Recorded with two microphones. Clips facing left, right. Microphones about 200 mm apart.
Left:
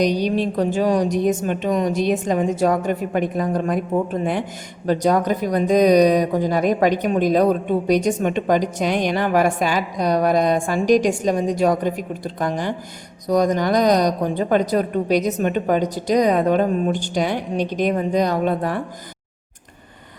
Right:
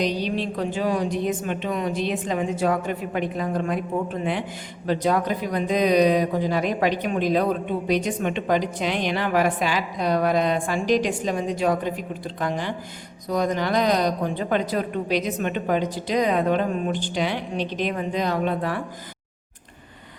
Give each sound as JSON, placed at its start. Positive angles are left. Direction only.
{"t": 0.0, "sound": "a woman's voice", "side_deg": 45}